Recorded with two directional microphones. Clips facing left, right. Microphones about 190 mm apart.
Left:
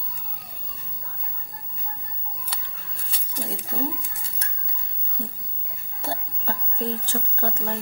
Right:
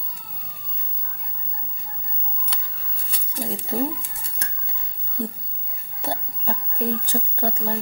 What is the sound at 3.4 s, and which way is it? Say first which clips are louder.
Speech: right 5 dB; 25° right (ahead or behind).